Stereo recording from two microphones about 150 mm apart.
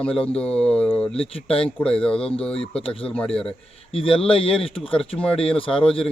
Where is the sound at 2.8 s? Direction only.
40° left (ahead or behind).